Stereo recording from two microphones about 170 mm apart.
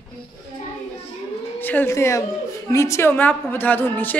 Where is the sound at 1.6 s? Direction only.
10° left (ahead or behind).